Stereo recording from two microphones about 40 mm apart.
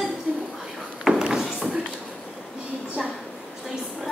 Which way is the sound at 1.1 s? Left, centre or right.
Centre.